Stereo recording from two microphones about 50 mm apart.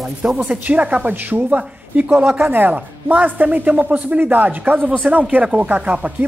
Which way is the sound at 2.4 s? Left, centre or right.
Right.